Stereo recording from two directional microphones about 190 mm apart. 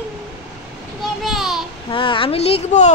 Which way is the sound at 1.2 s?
Centre (ahead or behind).